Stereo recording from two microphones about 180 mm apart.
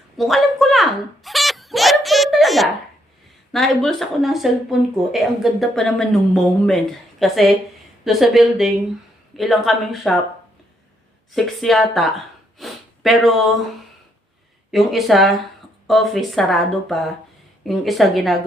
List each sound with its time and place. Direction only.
0.2 s a sound: centre (ahead or behind)
3.5 s speech: centre (ahead or behind)
11.3 s speech: centre (ahead or behind)
12.5 s snort: centre (ahead or behind)
14.7 s speech: centre (ahead or behind)